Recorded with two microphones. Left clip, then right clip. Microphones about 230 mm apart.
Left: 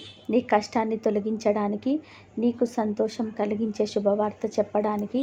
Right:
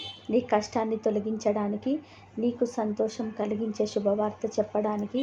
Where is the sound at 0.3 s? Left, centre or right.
Centre.